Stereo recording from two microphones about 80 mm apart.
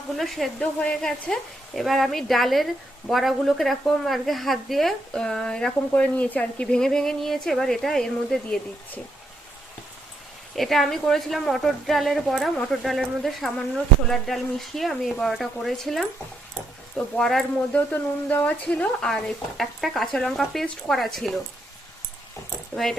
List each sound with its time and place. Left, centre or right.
0.2 s speech: centre
10.5 s speech: centre
17.2 s speech: centre
17.7 s speech: centre
19.0 s speech: centre
22.7 s speech: centre